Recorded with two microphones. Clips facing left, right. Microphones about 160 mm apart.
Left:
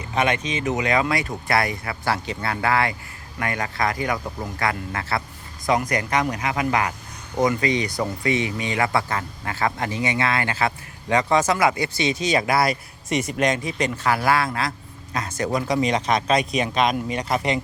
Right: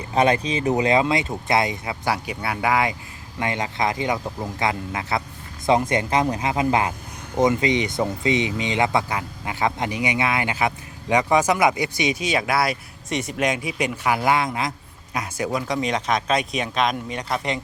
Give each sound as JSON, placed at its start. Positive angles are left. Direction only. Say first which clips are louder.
{"t": 0.1, "sound": "speech", "louder": "right 4 dB", "side_deg": -35}
{"t": 15.4, "sound": "speech", "louder": "left 3 dB", "side_deg": 0}